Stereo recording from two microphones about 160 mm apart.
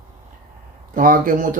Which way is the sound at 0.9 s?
60° right (ahead or behind).